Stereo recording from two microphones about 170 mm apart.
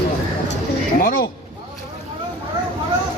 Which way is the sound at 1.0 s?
55° left (ahead or behind).